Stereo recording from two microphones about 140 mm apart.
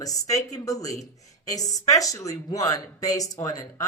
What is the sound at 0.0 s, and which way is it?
Speech, 25° left (ahead or behind).